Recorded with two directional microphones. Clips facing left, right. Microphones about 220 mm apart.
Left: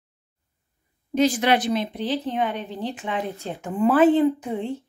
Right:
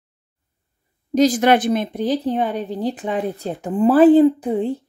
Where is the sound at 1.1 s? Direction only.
40° right (ahead or behind).